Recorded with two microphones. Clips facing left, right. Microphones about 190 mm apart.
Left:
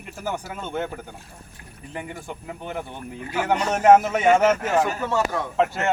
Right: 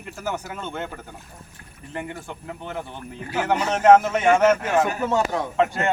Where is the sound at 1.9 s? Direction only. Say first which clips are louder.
Right 1 dB; 10° left (ahead or behind).